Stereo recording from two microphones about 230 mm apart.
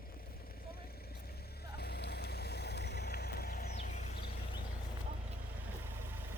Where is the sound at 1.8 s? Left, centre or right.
Left.